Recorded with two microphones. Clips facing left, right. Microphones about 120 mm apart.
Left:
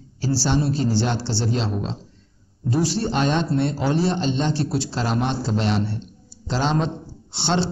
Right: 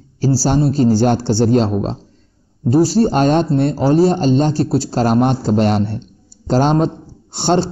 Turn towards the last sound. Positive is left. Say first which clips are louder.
# right 7 dB
turn(degrees=-45)  # may be behind; listen again after turning